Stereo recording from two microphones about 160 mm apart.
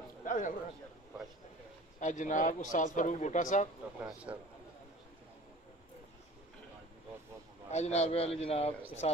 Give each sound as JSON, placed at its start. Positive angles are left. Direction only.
{"t": 0.2, "sound": "a sound", "side_deg": 55}
{"t": 2.0, "sound": "a man's voice", "side_deg": 50}
{"t": 4.0, "sound": "a man's voice", "side_deg": -10}
{"t": 7.7, "sound": "a man's voice", "side_deg": 45}